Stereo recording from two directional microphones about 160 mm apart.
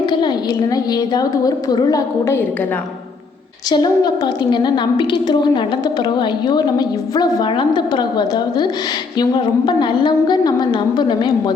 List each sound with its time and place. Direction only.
0.0 s a woman's voice: 25° left (ahead or behind)
3.7 s a woman's voice: 25° left (ahead or behind)